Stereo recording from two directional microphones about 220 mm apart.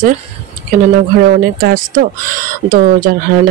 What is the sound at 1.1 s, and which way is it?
Speech, 40° right (ahead or behind).